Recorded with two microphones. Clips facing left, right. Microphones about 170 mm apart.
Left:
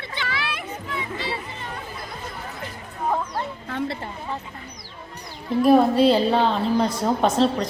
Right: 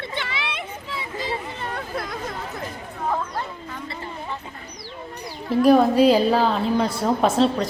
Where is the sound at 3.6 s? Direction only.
75° left (ahead or behind).